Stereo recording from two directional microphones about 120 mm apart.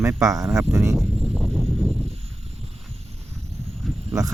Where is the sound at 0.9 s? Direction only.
Centre (ahead or behind).